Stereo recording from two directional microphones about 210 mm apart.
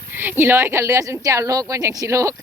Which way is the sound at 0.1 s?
10° right (ahead or behind).